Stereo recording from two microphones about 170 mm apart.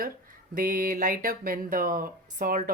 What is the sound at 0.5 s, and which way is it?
Speech, 55° right (ahead or behind).